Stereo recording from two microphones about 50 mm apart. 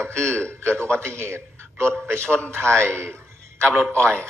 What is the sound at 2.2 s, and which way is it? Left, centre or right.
Speech, left.